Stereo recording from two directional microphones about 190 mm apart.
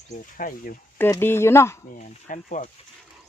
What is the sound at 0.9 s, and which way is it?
Speech, 10° left (ahead or behind).